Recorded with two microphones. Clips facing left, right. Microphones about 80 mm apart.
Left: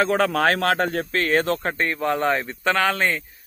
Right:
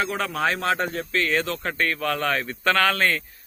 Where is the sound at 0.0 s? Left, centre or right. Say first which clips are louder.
Left 6 dB; left.